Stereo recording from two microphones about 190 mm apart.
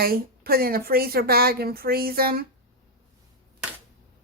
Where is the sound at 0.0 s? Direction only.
50° right (ahead or behind).